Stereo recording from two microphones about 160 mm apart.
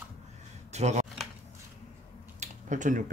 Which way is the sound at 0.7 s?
45° right (ahead or behind).